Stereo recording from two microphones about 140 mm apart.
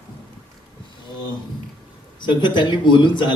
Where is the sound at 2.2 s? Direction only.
35° left (ahead or behind).